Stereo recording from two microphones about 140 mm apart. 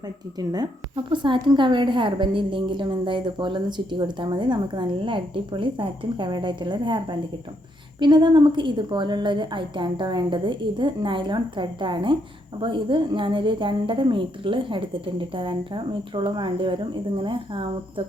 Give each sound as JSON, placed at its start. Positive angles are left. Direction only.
{"t": 0.3, "sound": "a woman's voice", "side_deg": -25}